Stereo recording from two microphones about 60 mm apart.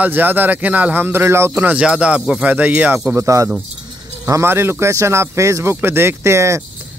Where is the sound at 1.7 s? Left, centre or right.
Centre.